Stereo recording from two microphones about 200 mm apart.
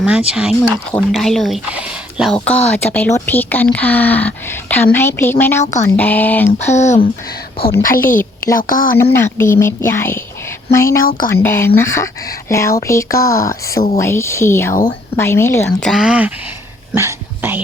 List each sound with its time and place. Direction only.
0.0 s speech: 5° right (ahead or behind)
6.7 s speech: 35° left (ahead or behind)
7.6 s a woman's voice: 45° left (ahead or behind)
9.0 s speech: 10° left (ahead or behind)
14.7 s a woman's voice: 45° left (ahead or behind)
15.2 s speech: 10° left (ahead or behind); by 16.3 s 5° right (ahead or behind)
16.9 s whispering: 15° right (ahead or behind)